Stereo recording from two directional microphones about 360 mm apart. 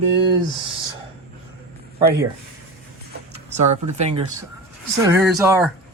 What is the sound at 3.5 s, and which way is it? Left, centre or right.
Speech, centre.